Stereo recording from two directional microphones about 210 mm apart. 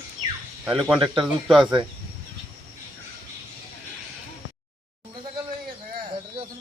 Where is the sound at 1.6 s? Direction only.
20° right (ahead or behind).